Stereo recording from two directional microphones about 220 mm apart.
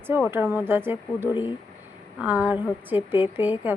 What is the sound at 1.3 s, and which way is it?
Speech, 20° left (ahead or behind).